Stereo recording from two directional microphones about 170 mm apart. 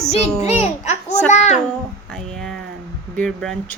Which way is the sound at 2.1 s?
5° left (ahead or behind).